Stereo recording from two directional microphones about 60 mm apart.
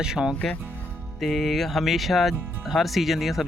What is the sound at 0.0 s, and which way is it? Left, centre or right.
Speech, centre.